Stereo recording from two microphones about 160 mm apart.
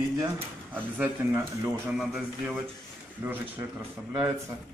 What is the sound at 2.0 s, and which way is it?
Speech, centre (ahead or behind).